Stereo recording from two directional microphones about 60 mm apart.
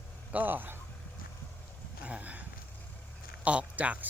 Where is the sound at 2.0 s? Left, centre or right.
Right.